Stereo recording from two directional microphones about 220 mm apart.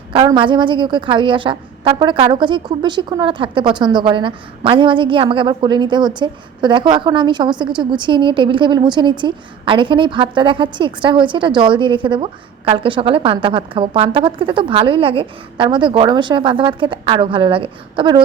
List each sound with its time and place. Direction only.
0.1 s a woman's voice: 20° right (ahead or behind)